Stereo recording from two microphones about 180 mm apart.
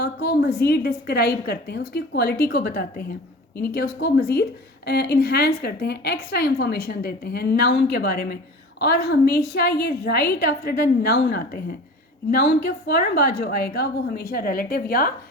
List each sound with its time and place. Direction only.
0.0 s a woman's voice: 65° left (ahead or behind)